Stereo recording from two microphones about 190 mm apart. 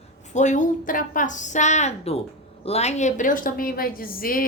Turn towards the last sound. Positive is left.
turn(degrees=50)  # may be behind; listen again after turning